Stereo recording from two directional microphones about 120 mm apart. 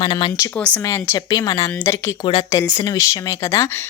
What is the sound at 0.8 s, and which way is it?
Speech, 25° left (ahead or behind).